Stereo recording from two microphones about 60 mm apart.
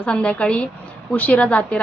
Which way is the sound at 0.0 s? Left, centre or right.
Centre.